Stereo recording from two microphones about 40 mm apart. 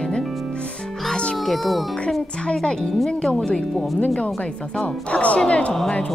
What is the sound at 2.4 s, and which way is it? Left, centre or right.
Speech, left.